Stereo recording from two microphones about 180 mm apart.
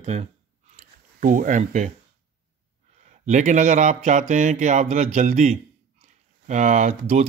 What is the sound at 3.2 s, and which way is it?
Speech, 45° right (ahead or behind).